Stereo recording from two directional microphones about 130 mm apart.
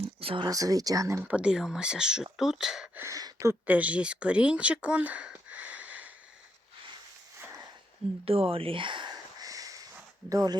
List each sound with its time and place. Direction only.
0.2 s a sound: 45° right (ahead or behind)
0.4 s speech: 25° right (ahead or behind)
1.2 s speech: 10° right (ahead or behind)
2.9 s speech: 20° right (ahead or behind)
8.2 s a sound: 45° right (ahead or behind); by 9.8 s 25° right (ahead or behind)
10.2 s speech: 25° right (ahead or behind)